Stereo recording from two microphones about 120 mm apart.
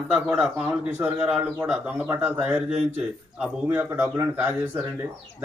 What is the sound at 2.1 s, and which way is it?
Speech, 15° right (ahead or behind).